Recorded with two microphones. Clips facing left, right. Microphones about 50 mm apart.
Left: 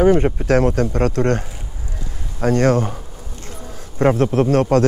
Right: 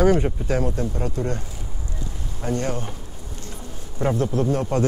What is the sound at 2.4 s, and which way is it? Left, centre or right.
Speech, left.